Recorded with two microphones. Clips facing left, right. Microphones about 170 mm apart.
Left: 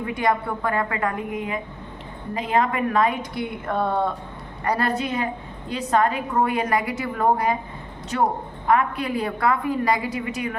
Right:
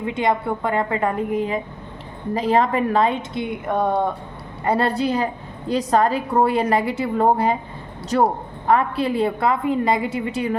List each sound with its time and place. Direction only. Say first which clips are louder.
0.0 s a woman's voice: right 2 dB; 25° right (ahead or behind)
4.6 s a woman's voice: right 4 dB; 25° right (ahead or behind)
8.1 s a woman's voice: right 4 dB; 40° right (ahead or behind)